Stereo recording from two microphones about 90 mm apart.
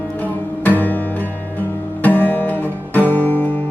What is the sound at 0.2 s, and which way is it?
Music, 20° left (ahead or behind).